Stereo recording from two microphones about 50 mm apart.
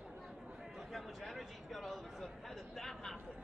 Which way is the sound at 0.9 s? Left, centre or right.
Centre.